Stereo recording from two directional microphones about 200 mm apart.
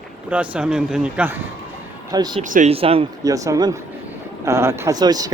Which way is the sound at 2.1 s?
20° right (ahead or behind).